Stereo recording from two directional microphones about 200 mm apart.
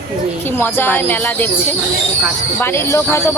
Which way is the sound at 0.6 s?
10° left (ahead or behind).